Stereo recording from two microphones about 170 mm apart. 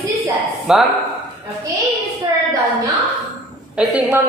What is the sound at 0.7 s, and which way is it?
Speech, centre (ahead or behind).